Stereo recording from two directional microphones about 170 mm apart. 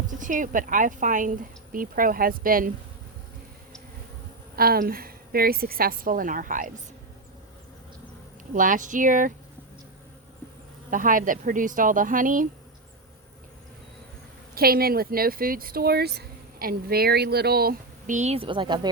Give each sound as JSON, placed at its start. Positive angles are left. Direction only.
{"t": 0.1, "sound": "a woman's voice", "side_deg": -50}
{"t": 4.5, "sound": "speech", "side_deg": -60}
{"t": 8.5, "sound": "a woman's voice", "side_deg": -50}
{"t": 10.9, "sound": "a woman's voice", "side_deg": -50}
{"t": 14.5, "sound": "speech", "side_deg": -60}